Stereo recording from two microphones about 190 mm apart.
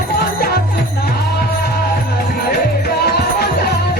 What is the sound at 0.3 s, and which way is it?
Music, 55° left (ahead or behind).